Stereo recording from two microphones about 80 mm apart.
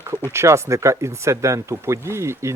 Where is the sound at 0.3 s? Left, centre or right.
Right.